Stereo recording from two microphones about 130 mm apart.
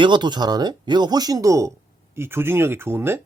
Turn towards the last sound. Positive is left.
turn(degrees=-15)  # may be behind; listen again after turning